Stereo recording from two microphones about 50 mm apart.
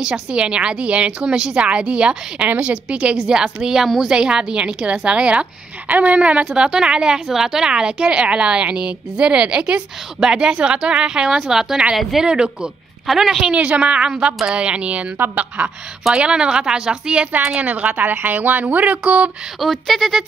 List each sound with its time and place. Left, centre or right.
0.0 s a woman's voice: centre
6.4 s a woman's voice: centre
13.0 s speech: centre
13.5 s a woman's voice: right
16.0 s a woman's voice: centre
19.6 s speech: centre